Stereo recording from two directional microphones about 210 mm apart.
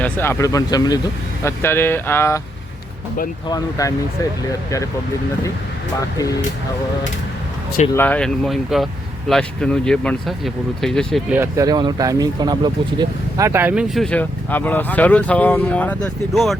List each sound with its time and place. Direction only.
0.0 s speech: 10° left (ahead or behind)
3.5 s speech: 15° left (ahead or behind)
7.9 s speech: 5° left (ahead or behind)
11.3 s speech: 15° right (ahead or behind); by 16.6 s centre (ahead or behind)